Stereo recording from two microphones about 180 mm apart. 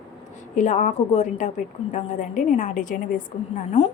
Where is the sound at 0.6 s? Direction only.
45° left (ahead or behind).